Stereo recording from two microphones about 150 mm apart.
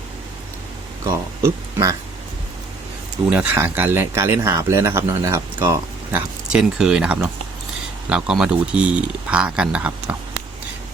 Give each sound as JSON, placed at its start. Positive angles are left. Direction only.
{"t": 1.4, "sound": "speech", "side_deg": -20}
{"t": 3.2, "sound": "speech", "side_deg": -10}